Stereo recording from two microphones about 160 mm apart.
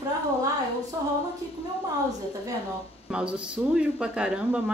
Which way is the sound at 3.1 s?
5° right (ahead or behind).